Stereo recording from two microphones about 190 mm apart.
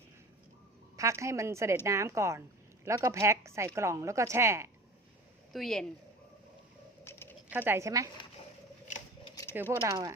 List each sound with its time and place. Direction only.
0.9 s a woman's voice: 15° right (ahead or behind)
5.5 s speech: centre (ahead or behind)
7.0 s a sound: 10° left (ahead or behind)
7.5 s a woman's voice: 10° right (ahead or behind)
9.3 s a sound: 15° left (ahead or behind)
9.6 s a woman's voice: 15° right (ahead or behind)